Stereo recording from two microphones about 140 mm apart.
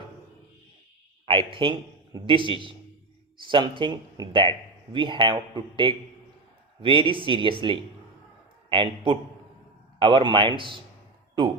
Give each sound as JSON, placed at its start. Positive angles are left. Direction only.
{"t": 1.2, "sound": "speech", "side_deg": -40}